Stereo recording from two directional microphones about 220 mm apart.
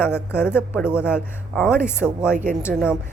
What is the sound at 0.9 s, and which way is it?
Speech, 5° right (ahead or behind).